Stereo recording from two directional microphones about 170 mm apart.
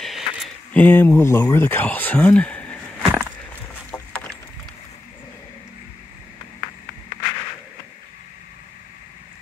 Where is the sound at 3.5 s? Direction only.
20° left (ahead or behind).